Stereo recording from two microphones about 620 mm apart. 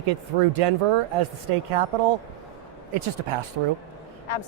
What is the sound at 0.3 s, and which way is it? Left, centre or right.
Speech, right.